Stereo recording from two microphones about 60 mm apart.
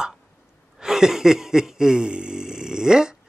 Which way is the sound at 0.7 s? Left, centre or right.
Centre.